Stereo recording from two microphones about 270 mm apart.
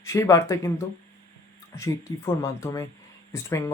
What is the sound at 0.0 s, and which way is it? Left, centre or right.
Speech, centre.